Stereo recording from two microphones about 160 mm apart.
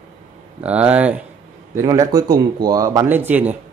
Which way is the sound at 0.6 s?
10° right (ahead or behind).